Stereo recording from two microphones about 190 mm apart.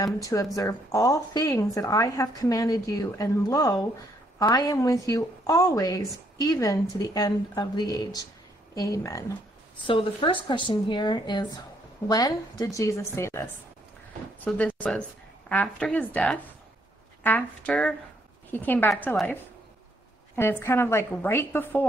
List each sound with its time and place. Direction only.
0.0 s a woman's voice: 15° left (ahead or behind)
9.8 s a woman's voice: 25° left (ahead or behind)
14.5 s speech: 5° left (ahead or behind)
20.3 s speech: 10° left (ahead or behind)